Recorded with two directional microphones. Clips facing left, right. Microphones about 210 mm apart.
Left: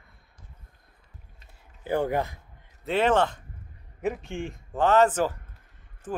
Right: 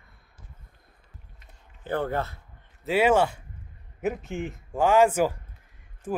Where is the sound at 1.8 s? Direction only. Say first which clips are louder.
Left 2 dB; 15° left (ahead or behind).